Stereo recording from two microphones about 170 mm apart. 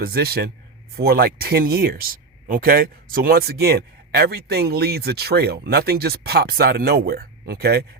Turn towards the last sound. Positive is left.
turn(degrees=-70)  # may be behind; listen again after turning